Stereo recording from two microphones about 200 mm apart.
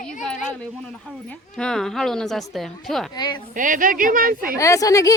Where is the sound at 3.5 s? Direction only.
40° right (ahead or behind).